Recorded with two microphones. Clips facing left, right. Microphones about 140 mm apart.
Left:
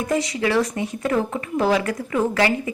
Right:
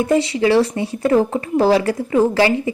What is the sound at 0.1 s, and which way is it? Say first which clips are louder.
Speech: right 5 dB; 30° right (ahead or behind).